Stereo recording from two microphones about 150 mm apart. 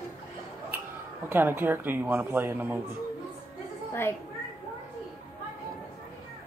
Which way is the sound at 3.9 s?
15° left (ahead or behind).